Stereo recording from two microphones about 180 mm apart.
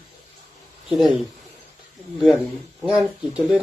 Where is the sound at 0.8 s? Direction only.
Centre (ahead or behind).